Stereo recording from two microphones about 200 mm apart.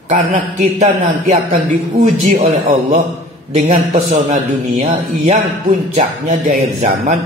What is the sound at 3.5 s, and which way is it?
Speech, 35° right (ahead or behind).